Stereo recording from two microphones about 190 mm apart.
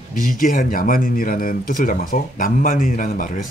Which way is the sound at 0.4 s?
45° left (ahead or behind).